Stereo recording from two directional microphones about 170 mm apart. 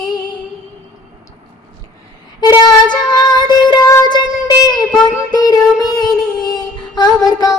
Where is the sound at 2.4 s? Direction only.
25° left (ahead or behind).